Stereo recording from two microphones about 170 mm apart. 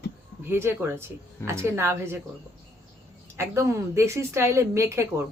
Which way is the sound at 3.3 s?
15° right (ahead or behind).